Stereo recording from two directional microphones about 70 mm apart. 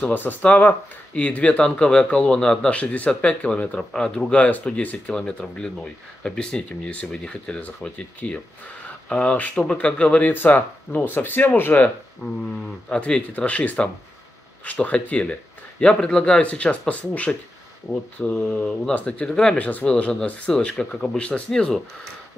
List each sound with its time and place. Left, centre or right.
0.0 s speech: left
10.3 s speech: left
12.9 s speech: centre
17.9 s speech: left
18.2 s speech: centre